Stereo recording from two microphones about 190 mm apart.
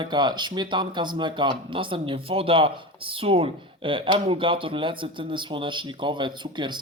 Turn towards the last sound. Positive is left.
turn(degrees=-25)  # may be behind; listen again after turning